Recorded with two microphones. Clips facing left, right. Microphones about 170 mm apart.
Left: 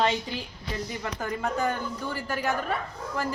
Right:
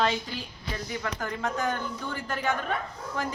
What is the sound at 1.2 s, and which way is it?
A woman's voice, 5° left (ahead or behind).